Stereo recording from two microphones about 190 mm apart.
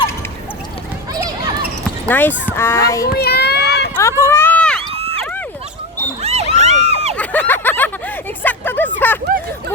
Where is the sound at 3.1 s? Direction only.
55° left (ahead or behind).